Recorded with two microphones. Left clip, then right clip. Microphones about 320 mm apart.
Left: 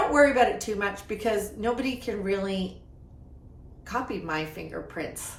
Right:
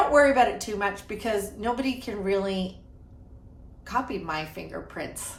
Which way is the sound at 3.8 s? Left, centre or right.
Centre.